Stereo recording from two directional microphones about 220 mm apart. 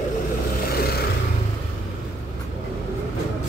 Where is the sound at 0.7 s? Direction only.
45° left (ahead or behind).